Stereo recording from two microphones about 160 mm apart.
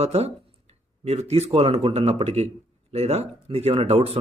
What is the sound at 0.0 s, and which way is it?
Speech, 40° right (ahead or behind).